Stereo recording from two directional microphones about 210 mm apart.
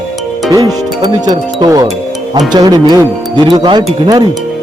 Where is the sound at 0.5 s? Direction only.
20° right (ahead or behind).